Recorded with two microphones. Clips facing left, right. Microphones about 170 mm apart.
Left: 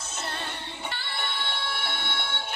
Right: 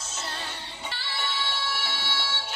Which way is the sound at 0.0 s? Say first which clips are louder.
Left 2 dB; 60° left (ahead or behind).